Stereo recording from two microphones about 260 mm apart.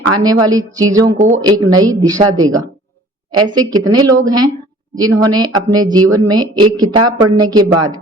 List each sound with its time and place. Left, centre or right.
0.1 s speech: centre
1.0 s speech: right
1.4 s speech: centre